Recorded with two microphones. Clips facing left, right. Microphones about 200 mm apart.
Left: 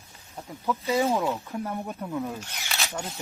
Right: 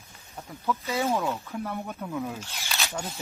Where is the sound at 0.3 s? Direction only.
15° left (ahead or behind).